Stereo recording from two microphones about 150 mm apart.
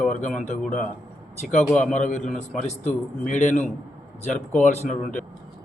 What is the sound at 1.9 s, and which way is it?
Speech, 55° left (ahead or behind).